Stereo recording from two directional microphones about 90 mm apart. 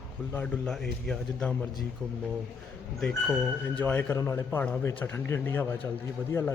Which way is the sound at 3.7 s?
15° left (ahead or behind).